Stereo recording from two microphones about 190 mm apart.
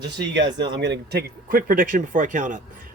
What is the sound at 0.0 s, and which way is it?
A man's voice, 65° right (ahead or behind).